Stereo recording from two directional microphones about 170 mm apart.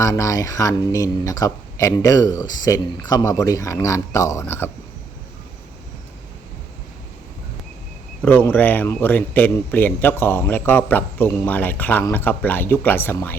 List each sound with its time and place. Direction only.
0.0 s speech: 20° left (ahead or behind)
8.2 s speech: 10° left (ahead or behind)